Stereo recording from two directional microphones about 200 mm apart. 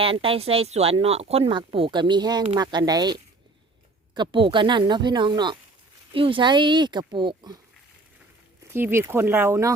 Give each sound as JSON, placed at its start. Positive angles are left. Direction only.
{"t": 0.0, "sound": "speech", "side_deg": -25}
{"t": 8.6, "sound": "speech", "side_deg": -10}